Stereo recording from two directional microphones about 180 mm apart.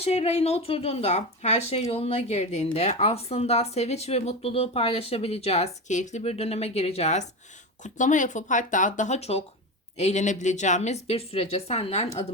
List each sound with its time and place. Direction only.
0.0 s speech: 35° left (ahead or behind)